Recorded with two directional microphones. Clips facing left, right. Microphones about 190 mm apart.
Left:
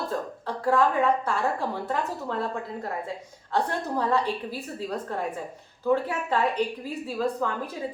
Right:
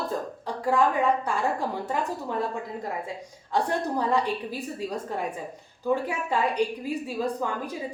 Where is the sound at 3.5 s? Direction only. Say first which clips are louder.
Right 1 dB; 15° right (ahead or behind).